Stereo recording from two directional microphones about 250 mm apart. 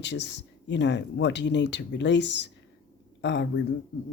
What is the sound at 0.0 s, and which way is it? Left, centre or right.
A woman's voice, left.